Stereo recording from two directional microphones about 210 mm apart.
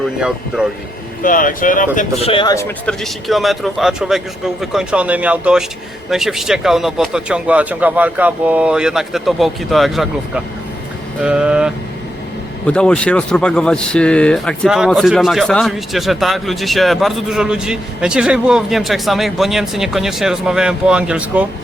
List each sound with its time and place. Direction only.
0.0 s speech: 5° right (ahead or behind)
1.2 s speech: 40° left (ahead or behind)
2.3 s speech: 20° left (ahead or behind); by 21.4 s 5° right (ahead or behind)